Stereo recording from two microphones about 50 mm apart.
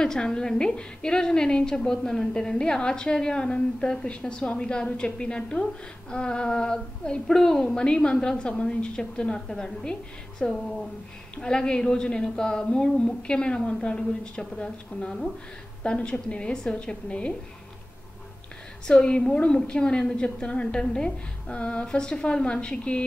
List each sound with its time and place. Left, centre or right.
0.0 s a woman's voice: centre
18.9 s a woman's voice: centre